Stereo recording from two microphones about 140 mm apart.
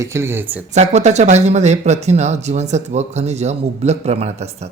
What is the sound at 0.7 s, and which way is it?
Speech, 55° right (ahead or behind).